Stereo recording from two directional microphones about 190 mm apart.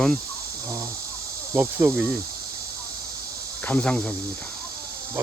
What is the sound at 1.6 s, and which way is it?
Cricket, 10° right (ahead or behind).